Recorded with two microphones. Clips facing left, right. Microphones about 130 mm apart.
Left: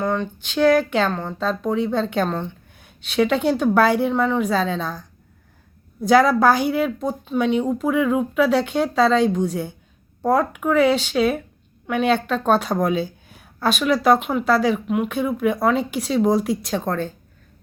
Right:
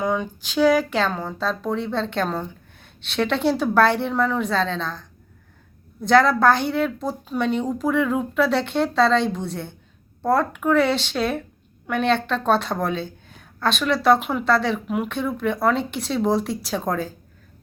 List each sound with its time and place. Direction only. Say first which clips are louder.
0.0 s a woman's voice: left 1 dB; 10° right (ahead or behind)